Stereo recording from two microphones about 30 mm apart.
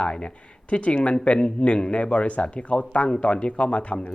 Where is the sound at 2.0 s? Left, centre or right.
Left.